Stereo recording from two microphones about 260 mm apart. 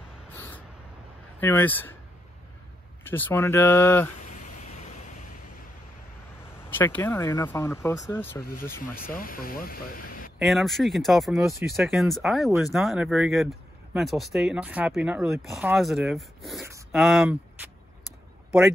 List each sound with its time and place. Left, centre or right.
0.3 s crow: centre
1.4 s speech: centre
3.0 s speech: centre
4.3 s vehicle: left
6.7 s speech: centre
8.9 s speech: left
10.4 s speech: centre